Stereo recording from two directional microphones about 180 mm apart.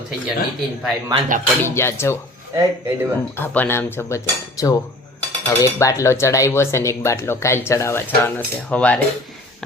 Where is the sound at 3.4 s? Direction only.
10° left (ahead or behind).